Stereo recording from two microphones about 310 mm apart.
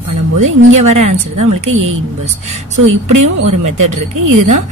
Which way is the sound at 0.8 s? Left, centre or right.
Right.